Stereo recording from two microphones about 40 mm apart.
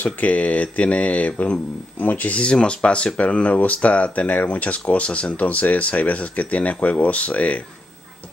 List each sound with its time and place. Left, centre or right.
0.0 s speech: left
2.4 s speech: left